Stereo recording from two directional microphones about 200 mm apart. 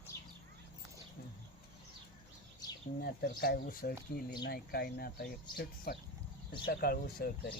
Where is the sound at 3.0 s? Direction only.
50° left (ahead or behind).